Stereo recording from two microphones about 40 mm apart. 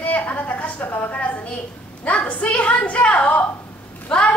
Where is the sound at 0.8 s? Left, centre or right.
Left.